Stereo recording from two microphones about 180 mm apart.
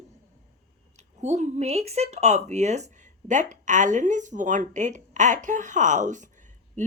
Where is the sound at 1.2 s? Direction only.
40° right (ahead or behind).